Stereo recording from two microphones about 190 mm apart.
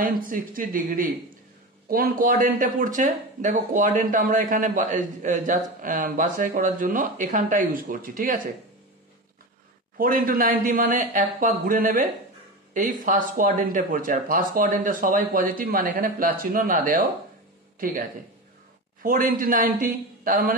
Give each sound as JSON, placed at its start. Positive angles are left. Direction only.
{"t": 0.0, "sound": "speech", "side_deg": -45}
{"t": 9.9, "sound": "speech", "side_deg": -50}
{"t": 19.0, "sound": "speech", "side_deg": -45}